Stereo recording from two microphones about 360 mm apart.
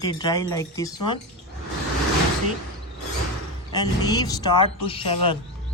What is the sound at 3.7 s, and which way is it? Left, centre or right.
Speech, centre.